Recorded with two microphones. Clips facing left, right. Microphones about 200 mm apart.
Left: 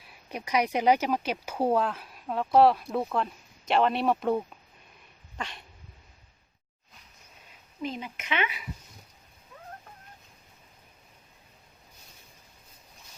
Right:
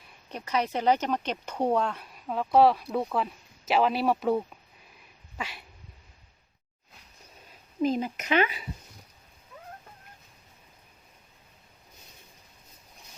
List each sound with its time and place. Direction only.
0.0 s speech: 5° left (ahead or behind)
5.4 s cat: 5° right (ahead or behind)
7.8 s speech: 40° right (ahead or behind)